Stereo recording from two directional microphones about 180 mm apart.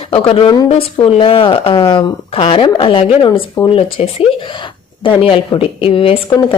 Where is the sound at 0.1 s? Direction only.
30° left (ahead or behind).